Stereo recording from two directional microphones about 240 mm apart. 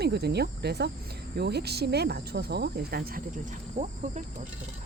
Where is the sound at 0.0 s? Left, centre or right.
Right.